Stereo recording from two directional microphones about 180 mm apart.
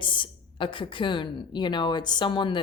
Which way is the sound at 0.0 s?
25° left (ahead or behind).